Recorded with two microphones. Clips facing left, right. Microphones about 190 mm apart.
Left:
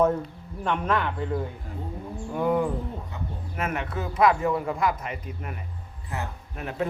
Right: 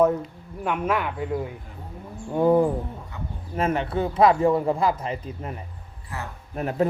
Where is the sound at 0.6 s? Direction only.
10° right (ahead or behind).